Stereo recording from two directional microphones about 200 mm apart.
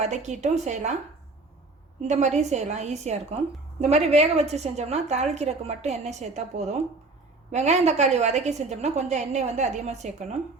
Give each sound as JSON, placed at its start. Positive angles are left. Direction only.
{"t": 0.0, "sound": "a woman's voice", "side_deg": -35}
{"t": 2.0, "sound": "a woman's voice", "side_deg": -35}